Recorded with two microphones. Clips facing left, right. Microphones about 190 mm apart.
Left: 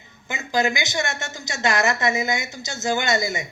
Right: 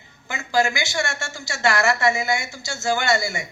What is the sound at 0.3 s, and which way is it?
Speech, 20° left (ahead or behind).